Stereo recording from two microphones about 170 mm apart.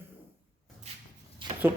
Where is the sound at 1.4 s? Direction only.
30° right (ahead or behind).